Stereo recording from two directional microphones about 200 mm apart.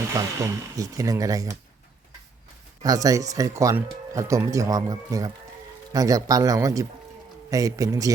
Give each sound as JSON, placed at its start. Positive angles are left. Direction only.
{"t": 0.1, "sound": "speech", "side_deg": -15}
{"t": 2.8, "sound": "speech", "side_deg": -15}